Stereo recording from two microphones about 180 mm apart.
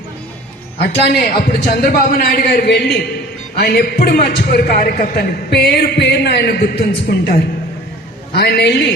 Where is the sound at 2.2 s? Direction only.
55° left (ahead or behind).